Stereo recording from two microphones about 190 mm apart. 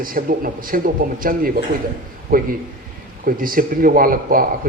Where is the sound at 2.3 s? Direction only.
50° right (ahead or behind).